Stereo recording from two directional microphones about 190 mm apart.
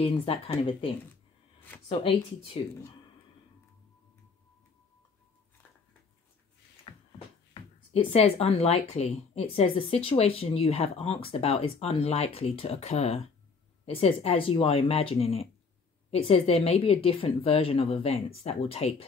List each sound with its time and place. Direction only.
0.0 s speech: 30° left (ahead or behind)
6.9 s a sound: 30° left (ahead or behind)
7.5 s speech: 30° left (ahead or behind)